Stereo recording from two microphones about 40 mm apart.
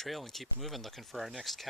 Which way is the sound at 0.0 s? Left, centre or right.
Centre.